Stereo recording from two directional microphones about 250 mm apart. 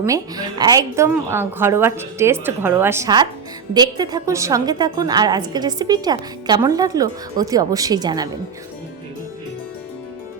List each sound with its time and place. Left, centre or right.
0.0 s a woman's voice: centre